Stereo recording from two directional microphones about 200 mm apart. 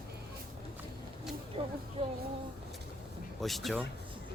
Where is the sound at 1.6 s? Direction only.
25° right (ahead or behind).